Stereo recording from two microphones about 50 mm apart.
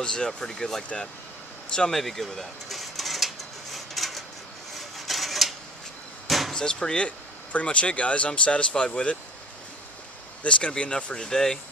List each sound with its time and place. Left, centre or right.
0.0 s speech: centre
1.7 s a sound: centre
6.2 s vehicle: centre
6.5 s speech: centre
10.4 s speech: left